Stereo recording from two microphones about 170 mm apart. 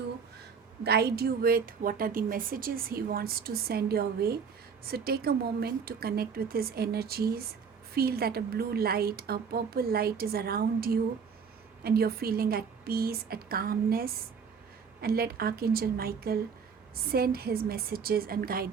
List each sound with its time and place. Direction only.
0.9 s a woman's voice: 70° right (ahead or behind)